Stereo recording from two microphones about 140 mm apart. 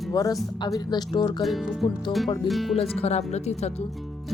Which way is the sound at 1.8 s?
Centre (ahead or behind).